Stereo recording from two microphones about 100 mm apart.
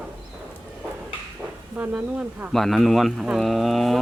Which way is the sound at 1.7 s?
15° right (ahead or behind).